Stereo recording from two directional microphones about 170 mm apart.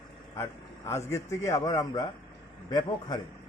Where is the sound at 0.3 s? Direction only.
15° left (ahead or behind).